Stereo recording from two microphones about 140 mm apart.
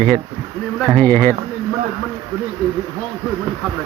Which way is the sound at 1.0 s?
15° left (ahead or behind).